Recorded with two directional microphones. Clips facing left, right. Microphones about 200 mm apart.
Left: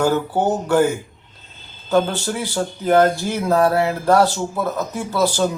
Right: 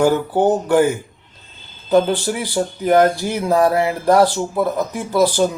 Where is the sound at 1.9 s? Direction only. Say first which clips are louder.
Right 3 dB; 15° right (ahead or behind).